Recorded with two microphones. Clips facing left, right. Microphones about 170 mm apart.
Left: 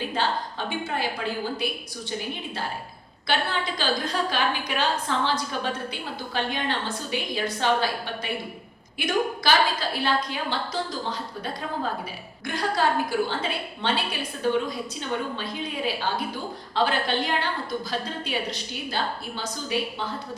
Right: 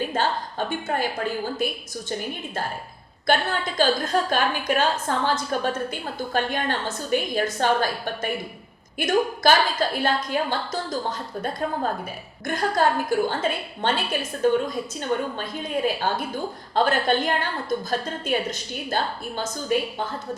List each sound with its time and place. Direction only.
0.9 s a woman's voice: 45° right (ahead or behind)
3.2 s a woman's voice: 45° right (ahead or behind)
12.5 s a woman's voice: 45° right (ahead or behind)